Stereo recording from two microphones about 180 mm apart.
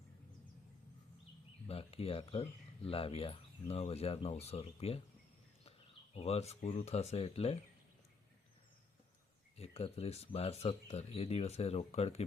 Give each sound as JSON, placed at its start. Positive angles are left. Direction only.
{"t": 1.6, "sound": "speech", "side_deg": 35}
{"t": 6.1, "sound": "speech", "side_deg": 35}
{"t": 9.6, "sound": "speech", "side_deg": 35}